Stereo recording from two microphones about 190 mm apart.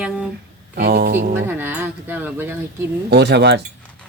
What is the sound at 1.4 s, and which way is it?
Speech, 10° right (ahead or behind).